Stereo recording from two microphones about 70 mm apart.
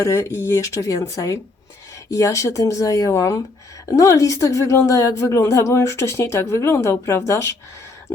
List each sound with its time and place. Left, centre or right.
0.0 s a woman's voice: left